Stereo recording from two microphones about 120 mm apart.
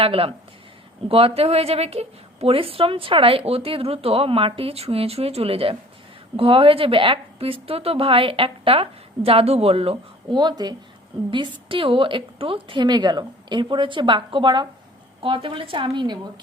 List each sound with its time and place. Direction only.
0.0 s a woman's voice: 50° right (ahead or behind)